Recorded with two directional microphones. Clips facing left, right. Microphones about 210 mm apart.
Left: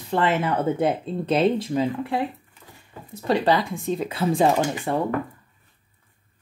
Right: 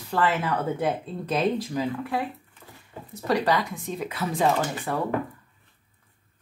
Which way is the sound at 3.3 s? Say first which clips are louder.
Left 3 dB; 30° left (ahead or behind).